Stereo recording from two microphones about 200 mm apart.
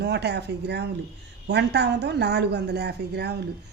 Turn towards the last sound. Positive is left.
turn(degrees=-55)  # may be behind; listen again after turning